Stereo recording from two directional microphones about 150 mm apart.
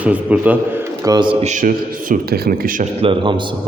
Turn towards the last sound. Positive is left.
turn(degrees=-35)  # may be behind; listen again after turning